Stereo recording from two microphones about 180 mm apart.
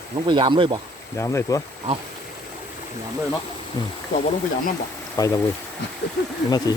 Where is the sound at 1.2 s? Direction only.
15° left (ahead or behind).